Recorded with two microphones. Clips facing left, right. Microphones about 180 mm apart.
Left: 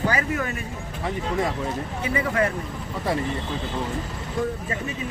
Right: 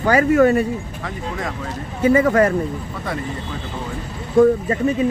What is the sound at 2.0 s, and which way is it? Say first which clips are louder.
Speech: right 10 dB; 50° right (ahead or behind).